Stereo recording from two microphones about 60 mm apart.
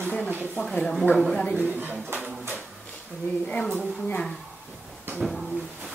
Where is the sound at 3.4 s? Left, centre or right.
Centre.